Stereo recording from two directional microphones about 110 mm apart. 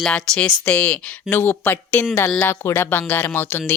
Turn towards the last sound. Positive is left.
turn(degrees=20)  # may be behind; listen again after turning